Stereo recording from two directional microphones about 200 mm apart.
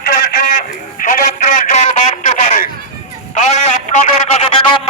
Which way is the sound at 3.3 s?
35° left (ahead or behind).